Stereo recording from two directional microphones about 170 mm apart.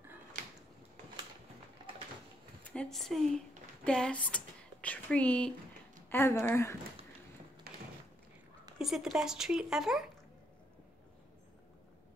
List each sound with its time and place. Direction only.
0.3 s a sound: 45° right (ahead or behind)
2.7 s a woman's voice: 5° left (ahead or behind)
7.7 s thump: 65° right (ahead or behind)
8.7 s speech: centre (ahead or behind)